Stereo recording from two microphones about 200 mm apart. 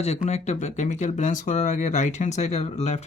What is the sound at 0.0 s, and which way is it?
Speech, 35° left (ahead or behind).